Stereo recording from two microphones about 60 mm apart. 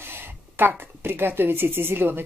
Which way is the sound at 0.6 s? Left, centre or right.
Right.